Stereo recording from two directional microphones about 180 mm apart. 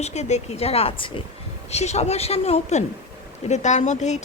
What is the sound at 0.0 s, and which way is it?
Speech, 40° left (ahead or behind).